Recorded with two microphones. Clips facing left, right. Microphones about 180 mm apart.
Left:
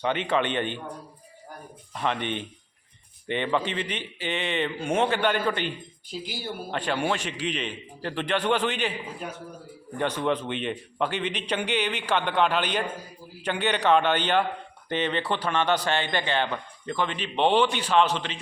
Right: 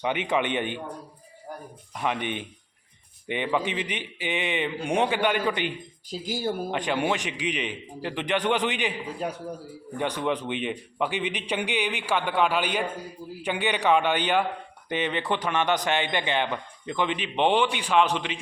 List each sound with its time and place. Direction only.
0.0 s a man's voice: 15° right (ahead or behind)
2.0 s a man's voice: 10° right (ahead or behind)
6.1 s speech: 45° right (ahead or behind)
6.7 s a man's voice: 15° right (ahead or behind)
10.0 s a man's voice: 10° right (ahead or behind)